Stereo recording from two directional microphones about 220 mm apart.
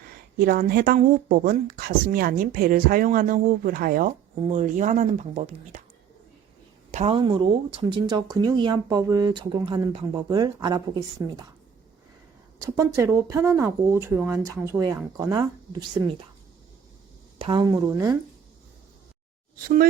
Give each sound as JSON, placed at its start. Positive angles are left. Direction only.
{"t": 0.3, "sound": "speech", "side_deg": -40}
{"t": 6.9, "sound": "speech", "side_deg": -25}
{"t": 12.5, "sound": "speech", "side_deg": -15}
{"t": 17.3, "sound": "speech", "side_deg": -25}
{"t": 19.5, "sound": "speech", "side_deg": -40}